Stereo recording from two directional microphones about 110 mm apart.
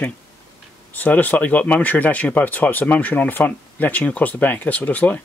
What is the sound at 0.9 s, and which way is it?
Speech, 15° left (ahead or behind).